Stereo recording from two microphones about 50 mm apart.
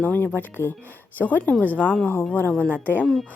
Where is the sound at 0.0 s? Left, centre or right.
Left.